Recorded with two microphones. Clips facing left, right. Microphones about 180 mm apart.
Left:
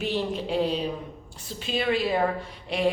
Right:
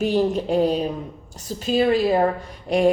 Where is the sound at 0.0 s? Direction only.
45° right (ahead or behind).